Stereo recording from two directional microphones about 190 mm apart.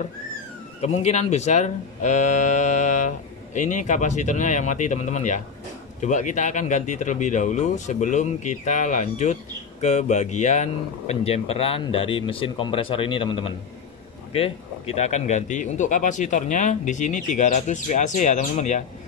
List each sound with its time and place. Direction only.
0.7 s speech: 35° left (ahead or behind)